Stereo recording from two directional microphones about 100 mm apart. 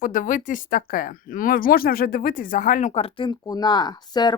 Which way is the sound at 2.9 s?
75° left (ahead or behind).